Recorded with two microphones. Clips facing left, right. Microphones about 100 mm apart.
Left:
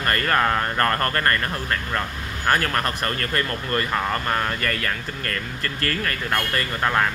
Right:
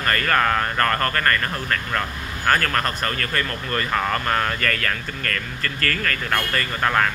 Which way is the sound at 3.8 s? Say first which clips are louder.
Right 2 dB; 10° left (ahead or behind).